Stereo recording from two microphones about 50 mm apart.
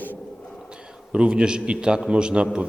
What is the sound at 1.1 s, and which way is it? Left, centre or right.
A man's voice, centre.